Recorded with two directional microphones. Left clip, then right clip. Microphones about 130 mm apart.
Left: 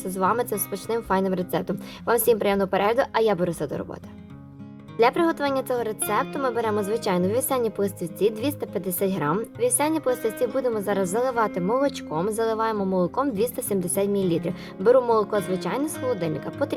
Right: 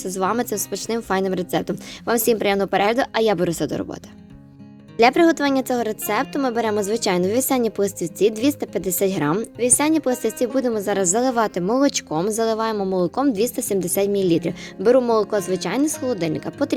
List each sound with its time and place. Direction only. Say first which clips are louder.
0.0 s a woman's voice: right 1 dB; 40° right (ahead or behind)
4.9 s a woman's voice: right 5 dB; 50° right (ahead or behind)